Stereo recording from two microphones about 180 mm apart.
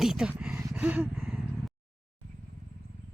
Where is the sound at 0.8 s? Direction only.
10° right (ahead or behind).